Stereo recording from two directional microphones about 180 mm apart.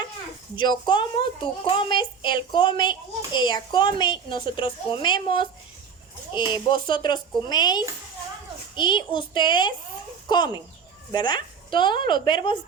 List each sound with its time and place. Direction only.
0.5 s a woman's voice: 25° left (ahead or behind)
6.5 s a woman's voice: 25° left (ahead or behind)